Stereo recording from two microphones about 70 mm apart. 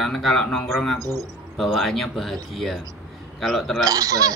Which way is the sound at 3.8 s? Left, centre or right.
Right.